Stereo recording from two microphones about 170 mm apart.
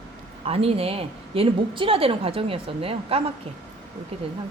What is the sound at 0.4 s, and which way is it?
A woman's voice, 35° right (ahead or behind).